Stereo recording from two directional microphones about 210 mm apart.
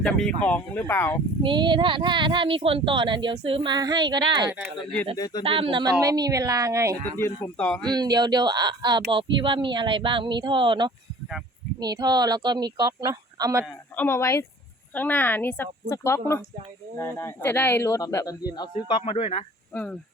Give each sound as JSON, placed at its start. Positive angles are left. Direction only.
{"t": 0.0, "sound": "speech", "side_deg": 5}
{"t": 1.4, "sound": "speech", "side_deg": -20}
{"t": 4.6, "sound": "speech", "side_deg": 0}
{"t": 5.1, "sound": "speech", "side_deg": 20}
{"t": 5.4, "sound": "speech", "side_deg": -25}
{"t": 7.2, "sound": "speech", "side_deg": 10}
{"t": 7.9, "sound": "speech", "side_deg": -20}
{"t": 13.7, "sound": "speech", "side_deg": 10}
{"t": 19.7, "sound": "speech", "side_deg": 5}